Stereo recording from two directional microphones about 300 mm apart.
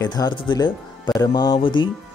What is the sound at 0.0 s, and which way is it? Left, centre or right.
Speech, centre.